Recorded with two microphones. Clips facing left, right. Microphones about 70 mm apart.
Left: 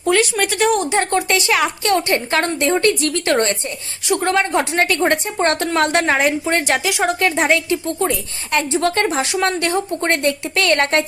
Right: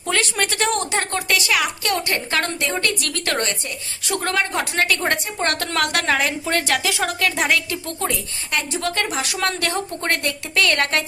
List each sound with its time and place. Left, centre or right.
0.0 s a woman's voice: centre
0.9 s a woman's voice: left
4.0 s a woman's voice: centre